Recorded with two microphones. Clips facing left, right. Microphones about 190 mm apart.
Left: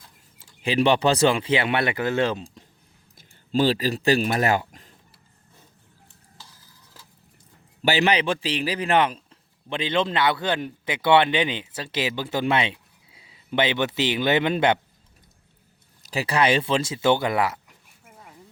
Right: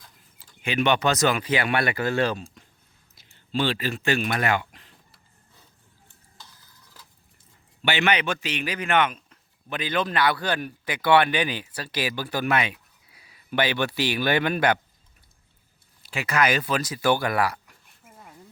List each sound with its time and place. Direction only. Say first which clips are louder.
0.6 s a man's voice: left 3 dB; 30° left (ahead or behind)
3.2 s speech: left 5 dB; 40° left (ahead or behind)
7.8 s a man's voice: left 3 dB; 35° left (ahead or behind)
16.0 s a man's voice: left 2 dB; 35° left (ahead or behind)